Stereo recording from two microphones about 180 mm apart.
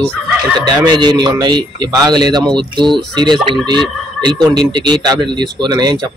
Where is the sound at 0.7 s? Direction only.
25° right (ahead or behind).